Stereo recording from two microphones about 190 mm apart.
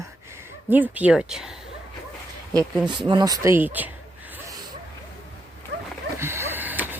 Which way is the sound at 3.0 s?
20° right (ahead or behind).